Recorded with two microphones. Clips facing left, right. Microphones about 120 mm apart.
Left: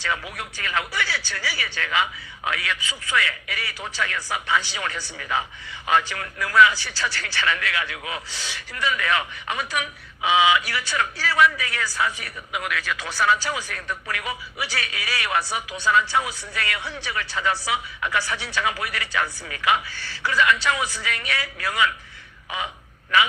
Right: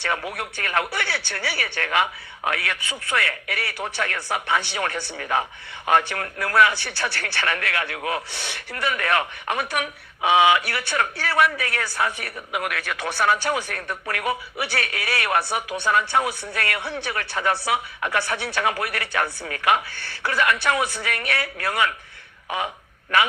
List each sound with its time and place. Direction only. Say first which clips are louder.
0.0 s speech: right 2 dB; 55° right (ahead or behind)
23.1 s speech: even; 55° right (ahead or behind)